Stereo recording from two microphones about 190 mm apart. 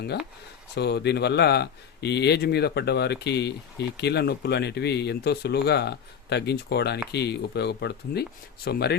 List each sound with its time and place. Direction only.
0.8 s speech: 60° left (ahead or behind)